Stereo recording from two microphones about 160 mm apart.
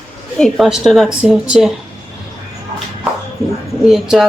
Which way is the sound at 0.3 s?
Centre (ahead or behind).